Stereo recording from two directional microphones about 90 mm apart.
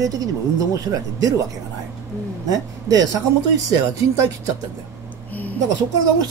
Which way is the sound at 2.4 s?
45° right (ahead or behind).